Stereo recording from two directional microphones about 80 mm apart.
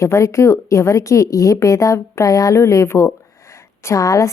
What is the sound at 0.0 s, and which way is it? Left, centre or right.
A woman's voice, left.